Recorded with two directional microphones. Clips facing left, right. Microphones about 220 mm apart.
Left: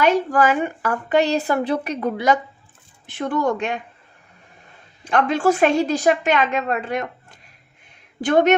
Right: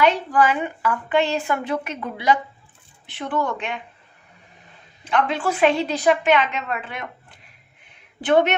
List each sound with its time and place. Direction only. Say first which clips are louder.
0.0 s a woman's voice: left 2 dB; 45° left (ahead or behind)
5.0 s a woman's voice: left 4 dB; 45° left (ahead or behind)